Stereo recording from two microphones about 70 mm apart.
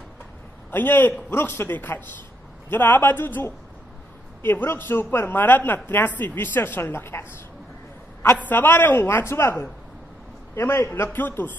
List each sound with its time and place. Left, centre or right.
0.7 s a man's voice: left
8.5 s a man's voice: left
11.1 s a woman's voice: left